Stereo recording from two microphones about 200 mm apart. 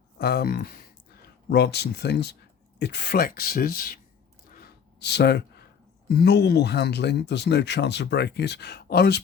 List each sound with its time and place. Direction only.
0.2 s speech: 50° left (ahead or behind)
4.4 s a sound: 50° left (ahead or behind)
6.1 s speech: 55° left (ahead or behind)